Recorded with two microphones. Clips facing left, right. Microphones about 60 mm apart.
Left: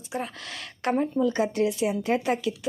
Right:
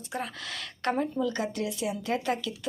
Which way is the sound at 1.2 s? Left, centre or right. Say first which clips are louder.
Left 6 dB; left.